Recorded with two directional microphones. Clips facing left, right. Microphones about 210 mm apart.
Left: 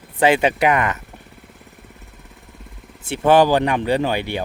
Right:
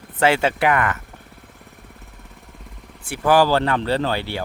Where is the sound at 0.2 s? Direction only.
15° left (ahead or behind).